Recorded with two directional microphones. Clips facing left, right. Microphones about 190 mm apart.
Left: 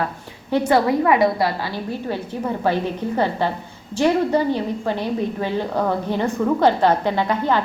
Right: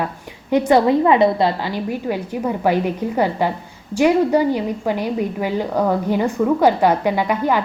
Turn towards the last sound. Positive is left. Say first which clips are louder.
# right 1 dB
turn(degrees=-10)  # may be behind; listen again after turning